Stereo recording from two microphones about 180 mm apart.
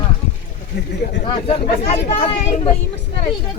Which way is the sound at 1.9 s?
40° left (ahead or behind).